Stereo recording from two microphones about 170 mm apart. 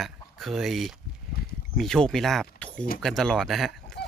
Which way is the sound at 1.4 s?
65° left (ahead or behind).